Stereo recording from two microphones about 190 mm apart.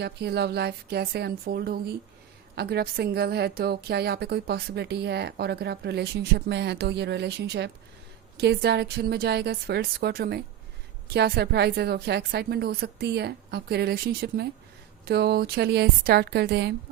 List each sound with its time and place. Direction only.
0.0 s a woman's voice: 60° right (ahead or behind)